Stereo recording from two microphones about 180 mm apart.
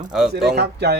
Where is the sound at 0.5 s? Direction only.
65° right (ahead or behind).